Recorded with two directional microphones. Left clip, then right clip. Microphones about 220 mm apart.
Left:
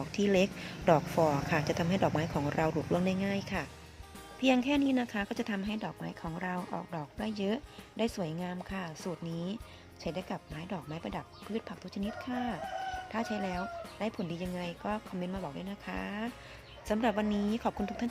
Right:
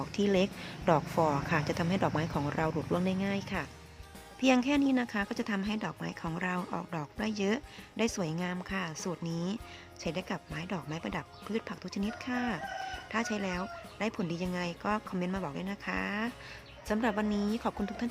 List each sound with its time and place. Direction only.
0.0 s a woman's voice: 5° right (ahead or behind)